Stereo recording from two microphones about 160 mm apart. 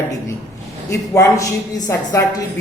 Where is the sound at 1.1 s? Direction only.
20° left (ahead or behind).